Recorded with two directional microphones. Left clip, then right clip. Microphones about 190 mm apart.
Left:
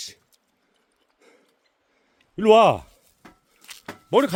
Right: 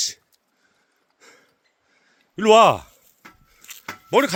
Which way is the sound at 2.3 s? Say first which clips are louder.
Right 2 dB; 5° left (ahead or behind).